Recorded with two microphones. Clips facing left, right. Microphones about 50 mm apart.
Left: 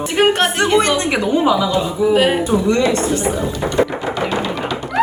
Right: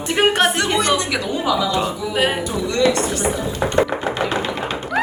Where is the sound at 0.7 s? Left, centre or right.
Left.